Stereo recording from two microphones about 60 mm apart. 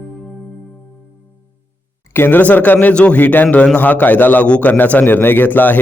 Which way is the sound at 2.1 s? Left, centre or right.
Left.